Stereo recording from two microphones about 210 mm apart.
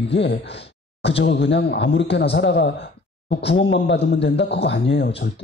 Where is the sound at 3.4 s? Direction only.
25° left (ahead or behind).